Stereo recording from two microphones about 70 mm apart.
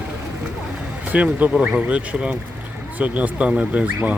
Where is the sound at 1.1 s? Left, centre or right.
Right.